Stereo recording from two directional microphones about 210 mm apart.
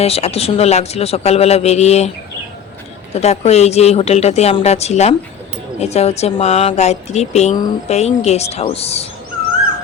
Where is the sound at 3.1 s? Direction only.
30° left (ahead or behind).